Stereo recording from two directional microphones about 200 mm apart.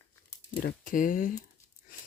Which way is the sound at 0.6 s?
40° left (ahead or behind).